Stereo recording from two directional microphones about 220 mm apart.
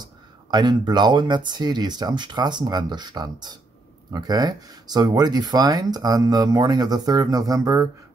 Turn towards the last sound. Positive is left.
turn(degrees=-15)  # may be behind; listen again after turning